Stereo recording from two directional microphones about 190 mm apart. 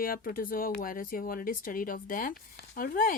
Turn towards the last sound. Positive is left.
turn(degrees=45)  # may be behind; listen again after turning